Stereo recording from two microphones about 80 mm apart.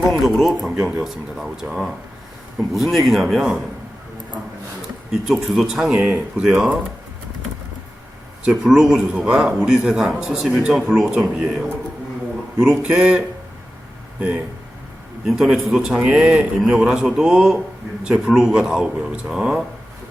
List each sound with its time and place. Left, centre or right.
0.1 s speech: centre
5.1 s speech: centre
8.6 s speech: centre
12.8 s speech: centre
15.2 s speech: centre